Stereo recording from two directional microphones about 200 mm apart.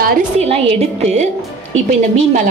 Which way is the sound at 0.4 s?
30° right (ahead or behind).